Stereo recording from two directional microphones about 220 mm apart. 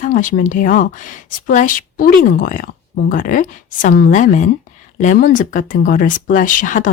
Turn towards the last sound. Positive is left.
turn(degrees=35)  # may be behind; listen again after turning